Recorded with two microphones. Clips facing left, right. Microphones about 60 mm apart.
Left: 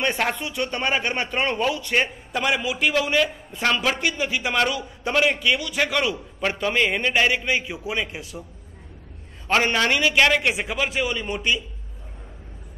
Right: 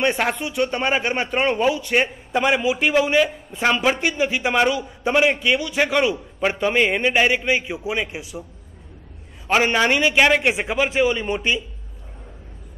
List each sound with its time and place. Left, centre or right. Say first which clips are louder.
0.0 s a woman's voice: right 3 dB; centre
9.7 s a woman's voice: right 3 dB; right
10.5 s a man's voice: right 4 dB; right